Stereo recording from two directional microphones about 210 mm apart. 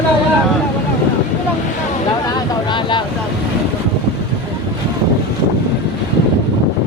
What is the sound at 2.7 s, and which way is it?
Vehicle, 20° left (ahead or behind).